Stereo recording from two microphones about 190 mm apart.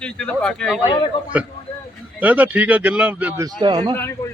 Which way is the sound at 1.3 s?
10° right (ahead or behind).